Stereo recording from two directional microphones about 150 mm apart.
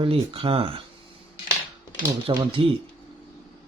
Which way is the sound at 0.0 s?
40° right (ahead or behind).